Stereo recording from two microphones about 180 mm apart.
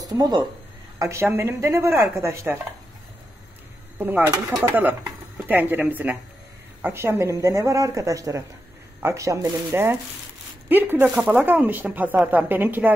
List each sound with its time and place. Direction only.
0.0 s a woman's voice: 20° right (ahead or behind)
4.0 s speech: 10° right (ahead or behind)